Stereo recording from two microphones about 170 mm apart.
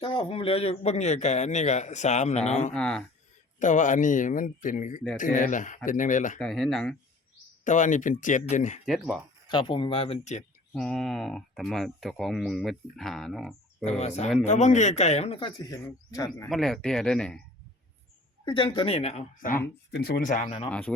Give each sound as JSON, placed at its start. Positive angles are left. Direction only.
{"t": 0.0, "sound": "a man's voice", "side_deg": 30}
{"t": 2.7, "sound": "speech", "side_deg": 5}
{"t": 3.6, "sound": "a man's voice", "side_deg": 50}
{"t": 6.4, "sound": "speech", "side_deg": 0}
{"t": 7.6, "sound": "a man's voice", "side_deg": 50}
{"t": 8.9, "sound": "speech", "side_deg": -5}
{"t": 9.5, "sound": "speech", "side_deg": 30}
{"t": 10.8, "sound": "speech", "side_deg": 5}
{"t": 14.4, "sound": "a man's voice", "side_deg": 45}
{"t": 15.4, "sound": "speech", "side_deg": 25}
{"t": 16.5, "sound": "speech", "side_deg": 0}
{"t": 18.4, "sound": "speech", "side_deg": 30}
{"t": 19.6, "sound": "speech", "side_deg": 70}
{"t": 20.7, "sound": "speech", "side_deg": 10}